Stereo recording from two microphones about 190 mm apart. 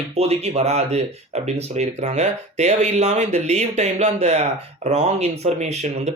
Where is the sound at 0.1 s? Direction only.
35° right (ahead or behind).